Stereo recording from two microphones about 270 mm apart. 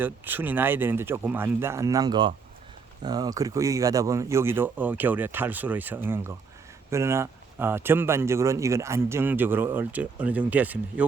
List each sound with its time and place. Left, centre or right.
0.0 s a man's voice: centre